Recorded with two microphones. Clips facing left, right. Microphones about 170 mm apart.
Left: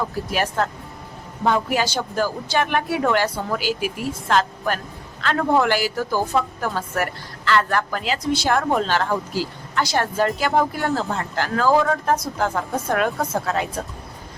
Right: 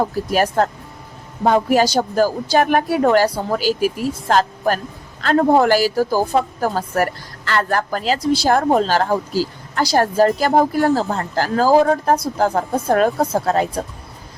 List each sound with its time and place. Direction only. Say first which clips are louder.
0.0 s a woman's voice: right 6 dB; 40° right (ahead or behind)